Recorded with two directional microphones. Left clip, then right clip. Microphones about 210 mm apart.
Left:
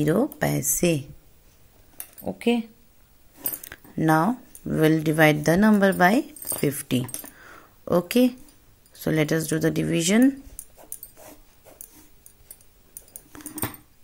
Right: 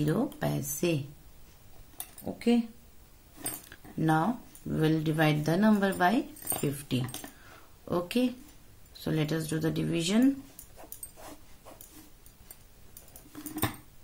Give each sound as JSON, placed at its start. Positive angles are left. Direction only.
{"t": 0.0, "sound": "speech", "side_deg": 40}
{"t": 2.2, "sound": "speech", "side_deg": 40}
{"t": 3.6, "sound": "speech", "side_deg": 40}